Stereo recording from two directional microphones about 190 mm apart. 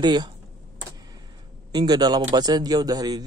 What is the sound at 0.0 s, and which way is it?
Speech, 20° right (ahead or behind).